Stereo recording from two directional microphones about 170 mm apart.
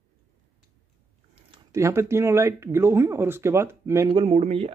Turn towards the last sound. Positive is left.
turn(degrees=-35)  # may be behind; listen again after turning